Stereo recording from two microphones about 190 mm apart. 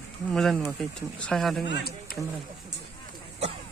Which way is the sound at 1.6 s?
60° left (ahead or behind).